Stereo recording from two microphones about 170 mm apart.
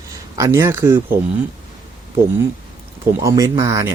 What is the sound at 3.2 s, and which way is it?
Speech, 20° right (ahead or behind).